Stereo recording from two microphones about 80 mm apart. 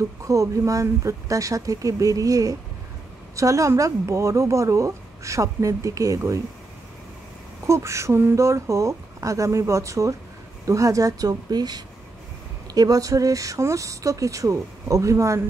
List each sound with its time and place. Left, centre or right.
0.2 s speech: right
7.6 s speech: right